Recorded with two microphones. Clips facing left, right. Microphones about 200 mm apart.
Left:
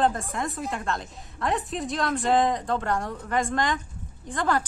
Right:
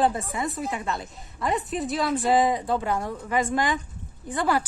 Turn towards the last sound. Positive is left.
turn(degrees=-5)  # may be behind; listen again after turning